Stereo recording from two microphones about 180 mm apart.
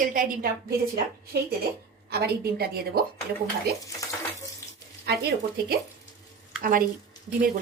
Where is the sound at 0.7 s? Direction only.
60° right (ahead or behind).